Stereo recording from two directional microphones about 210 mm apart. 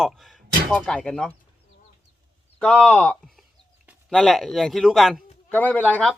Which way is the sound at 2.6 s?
5° left (ahead or behind).